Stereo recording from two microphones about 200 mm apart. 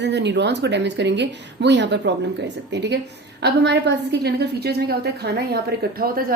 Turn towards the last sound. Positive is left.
turn(degrees=-50)  # may be behind; listen again after turning